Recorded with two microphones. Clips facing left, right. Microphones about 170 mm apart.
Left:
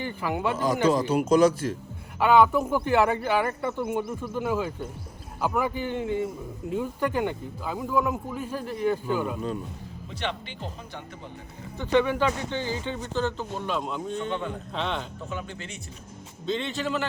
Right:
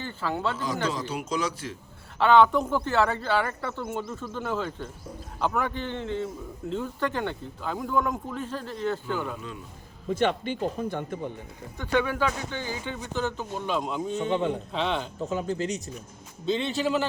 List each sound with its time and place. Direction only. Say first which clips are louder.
0.0 s speech: left 2 dB; 15° left (ahead or behind)
0.5 s speech: left 7 dB; 50° left (ahead or behind)
2.1 s speech: even; 10° left (ahead or behind)
10.1 s speech: right 9 dB; 45° right (ahead or behind)
11.8 s a man's voice: left 3 dB; 10° right (ahead or behind)
13.7 s speech: right 2 dB; centre (ahead or behind)
14.3 s a man's voice: right 5 dB; 25° right (ahead or behind)
14.7 s speech: right 2 dB; centre (ahead or behind)
15.2 s speech: right 7 dB; 35° right (ahead or behind)
16.5 s a man's voice: right 3 dB; 5° right (ahead or behind)